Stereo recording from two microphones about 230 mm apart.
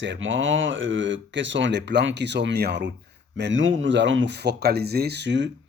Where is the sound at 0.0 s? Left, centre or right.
Right.